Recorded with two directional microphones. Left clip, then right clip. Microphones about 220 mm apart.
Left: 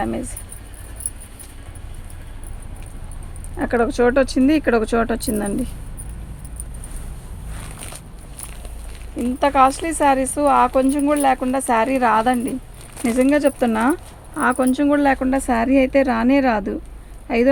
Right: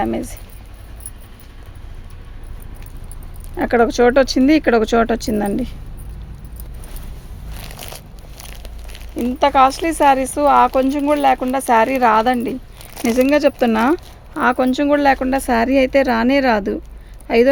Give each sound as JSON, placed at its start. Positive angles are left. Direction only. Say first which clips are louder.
{"t": 0.0, "sound": "speech", "louder": "right 4 dB", "side_deg": -40}
{"t": 3.6, "sound": "speech", "louder": "right 4 dB", "side_deg": -40}
{"t": 7.8, "sound": "speech", "louder": "right 3 dB", "side_deg": -45}